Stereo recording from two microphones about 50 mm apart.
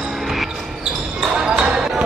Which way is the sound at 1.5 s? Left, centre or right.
Centre.